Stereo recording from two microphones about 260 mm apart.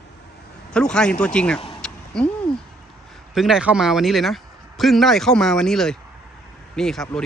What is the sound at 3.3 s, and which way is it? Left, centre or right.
Speech, centre.